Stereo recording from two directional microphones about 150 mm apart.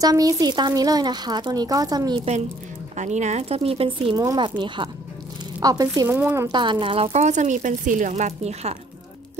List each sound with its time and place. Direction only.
0.0 s speech: 25° right (ahead or behind)
3.0 s speech: 50° right (ahead or behind)
4.2 s speech: 25° right (ahead or behind)
6.5 s speech: 30° right (ahead or behind)